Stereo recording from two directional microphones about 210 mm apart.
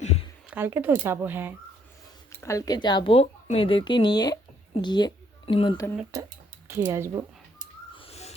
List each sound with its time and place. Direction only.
0.0 s a sound: 30° left (ahead or behind)
0.5 s speech: 10° right (ahead or behind)
2.4 s a woman's voice: 15° left (ahead or behind)
6.7 s speech: 10° right (ahead or behind)
7.9 s owl: 30° left (ahead or behind)